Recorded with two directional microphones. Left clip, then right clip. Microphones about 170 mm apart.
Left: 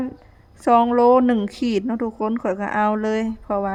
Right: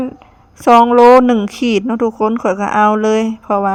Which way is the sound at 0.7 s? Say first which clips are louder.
Right 8 dB; 5° right (ahead or behind).